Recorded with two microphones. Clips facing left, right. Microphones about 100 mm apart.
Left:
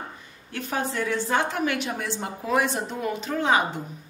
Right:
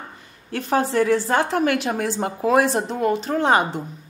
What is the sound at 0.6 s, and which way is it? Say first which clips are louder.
A woman's voice: right 8 dB; 40° right (ahead or behind).